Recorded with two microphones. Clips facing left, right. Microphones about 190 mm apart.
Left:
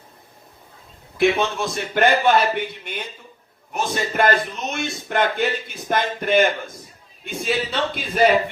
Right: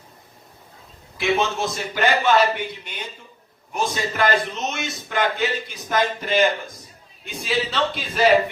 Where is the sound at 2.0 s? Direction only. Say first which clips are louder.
Left 1 dB; 55° left (ahead or behind).